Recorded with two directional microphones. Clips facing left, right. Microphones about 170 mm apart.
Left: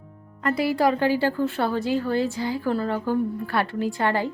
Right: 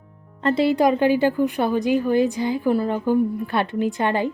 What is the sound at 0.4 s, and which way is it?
A woman's voice, 25° right (ahead or behind).